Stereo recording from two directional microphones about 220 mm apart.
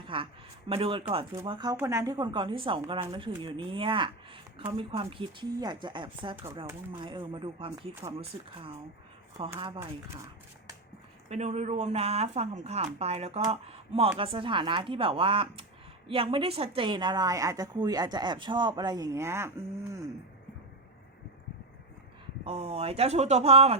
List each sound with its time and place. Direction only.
0.0 s a sound: 25° right (ahead or behind)
0.7 s a woman's voice: 25° right (ahead or behind)
9.6 s a woman's voice: 25° right (ahead or behind)
11.3 s a woman's voice: 30° right (ahead or behind); by 20.1 s 15° right (ahead or behind)
22.4 s a woman's voice: 25° right (ahead or behind)